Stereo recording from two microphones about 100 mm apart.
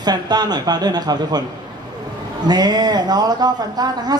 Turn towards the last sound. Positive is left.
turn(degrees=-40)  # may be behind; listen again after turning